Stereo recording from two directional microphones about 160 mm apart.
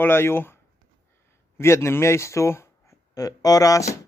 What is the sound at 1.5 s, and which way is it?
A man's voice, 15° left (ahead or behind).